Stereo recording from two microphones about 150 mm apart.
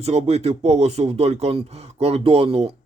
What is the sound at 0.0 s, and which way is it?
Speech, 45° right (ahead or behind).